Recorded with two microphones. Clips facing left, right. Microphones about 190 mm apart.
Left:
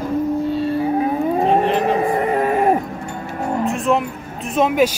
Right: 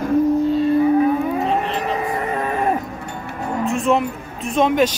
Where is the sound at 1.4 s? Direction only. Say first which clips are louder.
Left 5 dB; 55° left (ahead or behind).